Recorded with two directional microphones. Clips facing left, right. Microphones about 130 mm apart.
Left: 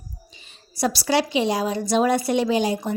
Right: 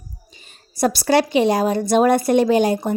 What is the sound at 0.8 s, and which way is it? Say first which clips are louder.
Speech: right 5 dB; 50° right (ahead or behind).